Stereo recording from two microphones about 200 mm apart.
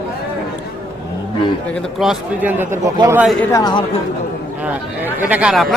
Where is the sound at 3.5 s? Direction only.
20° left (ahead or behind).